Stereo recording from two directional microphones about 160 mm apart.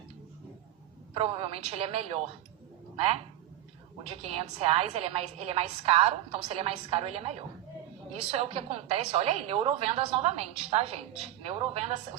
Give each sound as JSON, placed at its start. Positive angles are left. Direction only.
{"t": 1.1, "sound": "a woman's voice", "side_deg": -35}